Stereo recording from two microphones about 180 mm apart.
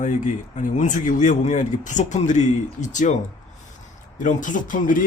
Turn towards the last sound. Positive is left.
turn(degrees=50)  # may be behind; listen again after turning